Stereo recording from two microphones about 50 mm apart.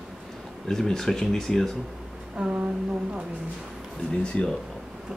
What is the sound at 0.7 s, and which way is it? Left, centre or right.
Speech, centre.